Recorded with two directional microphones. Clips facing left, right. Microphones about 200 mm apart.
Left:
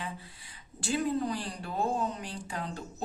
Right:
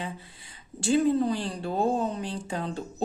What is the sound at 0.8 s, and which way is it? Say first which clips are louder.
A woman's voice: right 7 dB; 25° right (ahead or behind).